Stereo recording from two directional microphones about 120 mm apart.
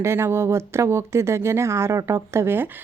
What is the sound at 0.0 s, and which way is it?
Speech, 20° right (ahead or behind).